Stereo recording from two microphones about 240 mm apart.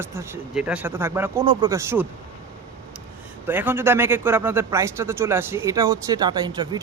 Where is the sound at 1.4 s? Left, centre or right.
Right.